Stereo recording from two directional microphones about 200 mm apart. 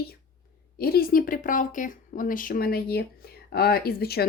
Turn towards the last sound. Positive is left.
turn(degrees=50)  # may be behind; listen again after turning